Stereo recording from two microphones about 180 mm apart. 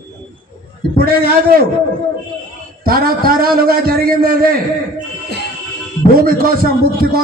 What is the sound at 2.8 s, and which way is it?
A man's voice, 55° right (ahead or behind).